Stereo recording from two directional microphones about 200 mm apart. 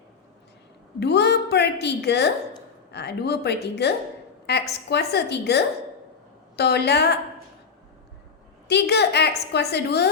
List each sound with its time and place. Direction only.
0.9 s a woman's voice: 55° left (ahead or behind)
8.6 s a woman's voice: 55° left (ahead or behind)